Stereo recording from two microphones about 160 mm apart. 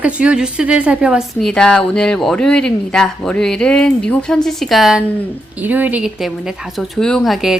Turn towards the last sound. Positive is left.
turn(degrees=0)  # may be behind; listen again after turning